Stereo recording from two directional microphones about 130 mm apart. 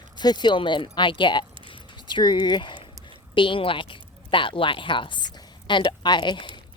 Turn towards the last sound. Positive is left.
turn(degrees=35)  # may be behind; listen again after turning